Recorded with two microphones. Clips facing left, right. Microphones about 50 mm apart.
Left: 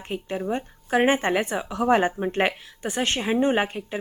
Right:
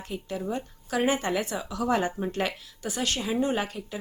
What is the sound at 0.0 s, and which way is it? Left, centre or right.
A woman's voice, left.